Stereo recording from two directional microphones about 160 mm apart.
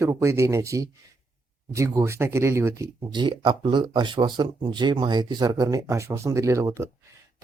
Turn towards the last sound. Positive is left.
turn(degrees=-20)  # may be behind; listen again after turning